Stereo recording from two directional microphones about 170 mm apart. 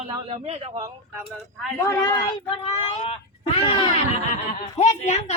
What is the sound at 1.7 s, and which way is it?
A woman's voice, 20° left (ahead or behind).